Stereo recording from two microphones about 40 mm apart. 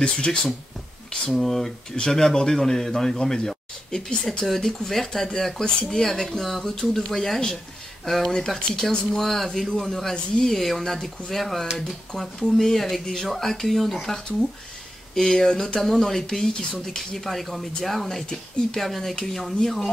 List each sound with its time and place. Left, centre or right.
0.0 s speech: left
1.3 s a man's voice: centre
4.5 s a man's voice: centre